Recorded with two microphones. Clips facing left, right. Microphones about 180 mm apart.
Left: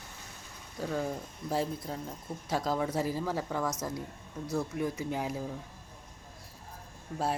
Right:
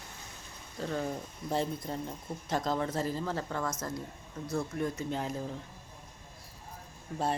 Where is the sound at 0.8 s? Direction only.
5° left (ahead or behind).